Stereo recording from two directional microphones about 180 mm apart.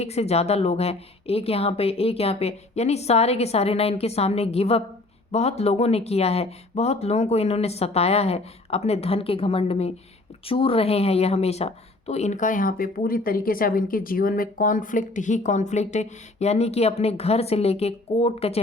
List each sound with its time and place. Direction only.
0.0 s speech: 35° left (ahead or behind)